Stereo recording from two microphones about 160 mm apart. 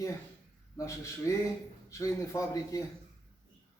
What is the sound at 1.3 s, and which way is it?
Speech, 20° left (ahead or behind).